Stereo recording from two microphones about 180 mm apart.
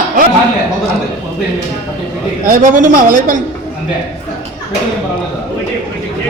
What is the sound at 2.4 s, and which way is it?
Speech, 50° right (ahead or behind).